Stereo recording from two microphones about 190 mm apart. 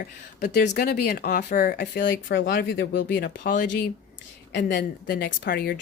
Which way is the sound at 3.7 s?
60° left (ahead or behind).